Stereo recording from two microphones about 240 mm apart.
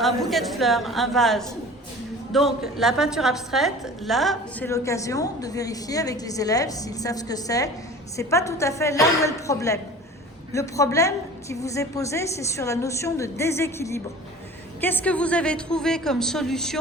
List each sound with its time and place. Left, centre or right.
0.0 s a woman's voice: centre
4.7 s a woman's voice: centre